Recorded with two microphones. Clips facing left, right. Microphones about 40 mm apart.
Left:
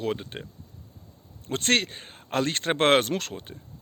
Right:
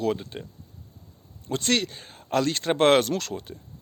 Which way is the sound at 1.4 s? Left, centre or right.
Left.